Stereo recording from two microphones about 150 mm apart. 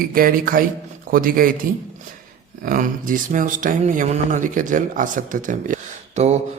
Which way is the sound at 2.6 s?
65° right (ahead or behind).